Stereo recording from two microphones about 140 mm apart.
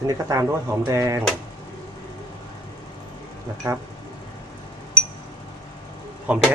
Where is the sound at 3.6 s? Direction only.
20° right (ahead or behind).